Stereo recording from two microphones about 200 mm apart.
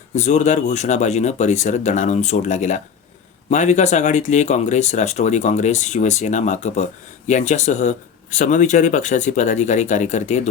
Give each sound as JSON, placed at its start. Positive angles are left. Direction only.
{"t": 0.1, "sound": "speech", "side_deg": 35}